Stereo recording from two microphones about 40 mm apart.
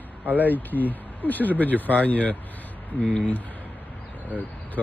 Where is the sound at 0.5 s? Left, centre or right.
Left.